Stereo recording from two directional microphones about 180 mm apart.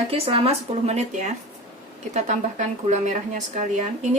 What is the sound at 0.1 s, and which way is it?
Speech, 35° right (ahead or behind).